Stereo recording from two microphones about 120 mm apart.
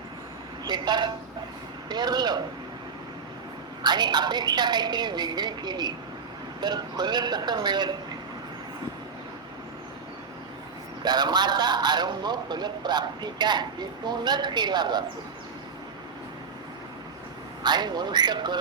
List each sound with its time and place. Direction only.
0.6 s speech: 35° right (ahead or behind)
3.8 s a man's voice: 35° right (ahead or behind)
11.0 s a man's voice: 35° right (ahead or behind)
17.6 s a man's voice: 35° right (ahead or behind)